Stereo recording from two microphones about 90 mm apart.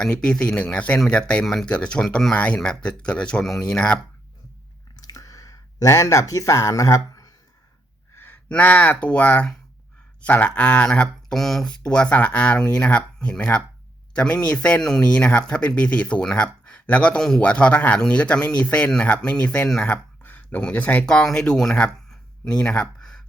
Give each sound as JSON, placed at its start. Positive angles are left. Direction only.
{"t": 0.0, "sound": "speech", "side_deg": 10}
{"t": 4.9, "sound": "a sound", "side_deg": 40}
{"t": 8.1, "sound": "gasp", "side_deg": 25}
{"t": 8.4, "sound": "speech", "side_deg": 15}
{"t": 20.2, "sound": "speech", "side_deg": 20}